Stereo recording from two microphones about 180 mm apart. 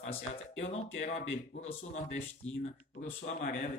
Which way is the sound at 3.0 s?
40° left (ahead or behind).